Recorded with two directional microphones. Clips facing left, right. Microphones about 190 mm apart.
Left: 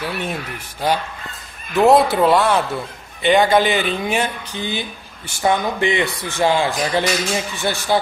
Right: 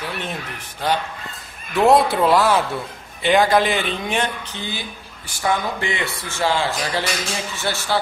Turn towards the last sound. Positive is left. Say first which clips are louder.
# left 4 dB
turn(degrees=15)  # may be behind; listen again after turning